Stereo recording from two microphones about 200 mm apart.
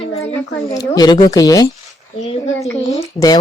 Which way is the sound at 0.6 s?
20° left (ahead or behind).